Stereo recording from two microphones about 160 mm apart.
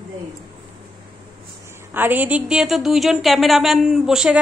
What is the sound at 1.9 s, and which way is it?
A woman's voice, 10° right (ahead or behind).